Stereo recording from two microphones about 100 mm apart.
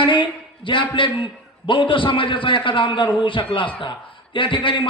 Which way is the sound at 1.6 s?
55° left (ahead or behind).